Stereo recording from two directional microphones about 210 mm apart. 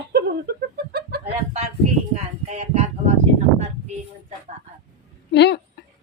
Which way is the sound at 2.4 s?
30° right (ahead or behind).